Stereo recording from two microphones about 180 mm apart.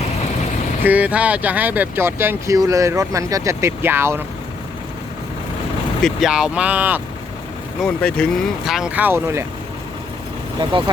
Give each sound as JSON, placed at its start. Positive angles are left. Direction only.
{"t": 0.9, "sound": "speech", "side_deg": -10}
{"t": 6.0, "sound": "speech", "side_deg": 0}
{"t": 7.8, "sound": "speech", "side_deg": 5}
{"t": 10.6, "sound": "speech", "side_deg": -25}